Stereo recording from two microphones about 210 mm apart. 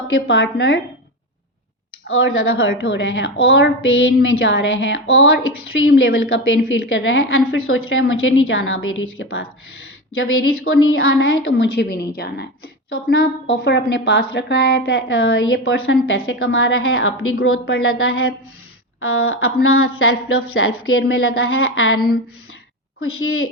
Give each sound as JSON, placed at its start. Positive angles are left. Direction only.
{"t": 0.3, "sound": "child singing", "side_deg": 55}
{"t": 2.0, "sound": "a woman's voice", "side_deg": 70}
{"t": 3.4, "sound": "child singing", "side_deg": 65}
{"t": 6.7, "sound": "a woman's voice", "side_deg": 70}
{"t": 7.5, "sound": "a woman's voice", "side_deg": 85}
{"t": 10.6, "sound": "a woman's voice", "side_deg": 75}
{"t": 12.9, "sound": "child singing", "side_deg": 65}
{"t": 13.7, "sound": "a woman's voice", "side_deg": 60}
{"t": 18.9, "sound": "a sound", "side_deg": 90}
{"t": 20.5, "sound": "a woman's voice", "side_deg": 75}
{"t": 21.9, "sound": "speech", "side_deg": 45}
{"t": 23.0, "sound": "a woman's voice", "side_deg": 75}